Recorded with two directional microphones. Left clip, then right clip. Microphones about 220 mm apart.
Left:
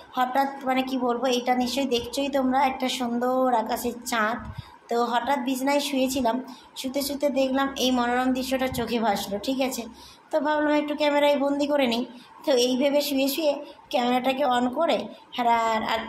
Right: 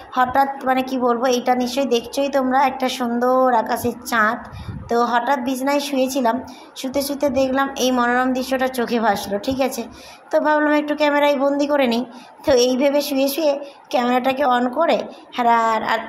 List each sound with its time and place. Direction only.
0.1 s a woman's voice: 20° right (ahead or behind)